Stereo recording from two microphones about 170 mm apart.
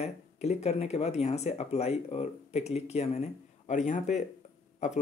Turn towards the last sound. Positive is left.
turn(degrees=45)  # may be behind; listen again after turning